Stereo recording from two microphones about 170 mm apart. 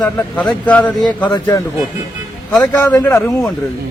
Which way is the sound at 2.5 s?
10° left (ahead or behind).